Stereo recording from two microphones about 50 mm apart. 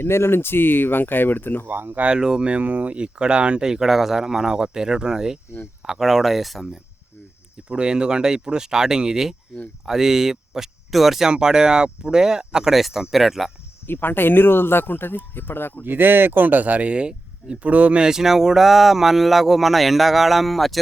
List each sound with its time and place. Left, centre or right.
0.0 s speech: left
1.6 s speech: right
2.0 s speech: centre
7.7 s speech: centre
11.3 s speech: centre
13.8 s speech: left
15.8 s speech: right
18.0 s speech: centre